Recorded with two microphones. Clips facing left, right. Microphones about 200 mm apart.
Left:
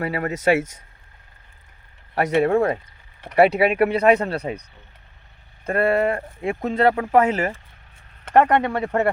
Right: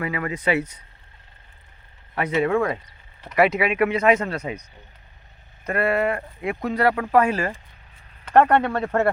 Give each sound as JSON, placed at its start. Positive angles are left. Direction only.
{"t": 0.0, "sound": "speech", "side_deg": 40}
{"t": 2.1, "sound": "speech", "side_deg": 40}
{"t": 5.6, "sound": "speech", "side_deg": 30}